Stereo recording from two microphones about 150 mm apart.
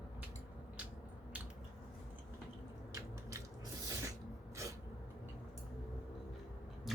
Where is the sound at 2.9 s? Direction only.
20° right (ahead or behind).